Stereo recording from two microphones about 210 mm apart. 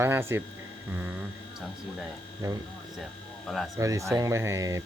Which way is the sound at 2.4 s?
15° right (ahead or behind).